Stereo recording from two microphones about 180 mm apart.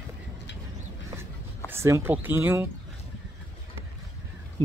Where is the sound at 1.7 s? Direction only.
15° right (ahead or behind).